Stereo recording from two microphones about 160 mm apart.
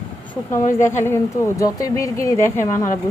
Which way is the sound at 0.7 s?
15° left (ahead or behind).